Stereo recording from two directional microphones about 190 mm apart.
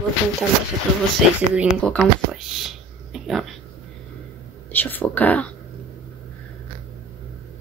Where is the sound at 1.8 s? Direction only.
5° left (ahead or behind).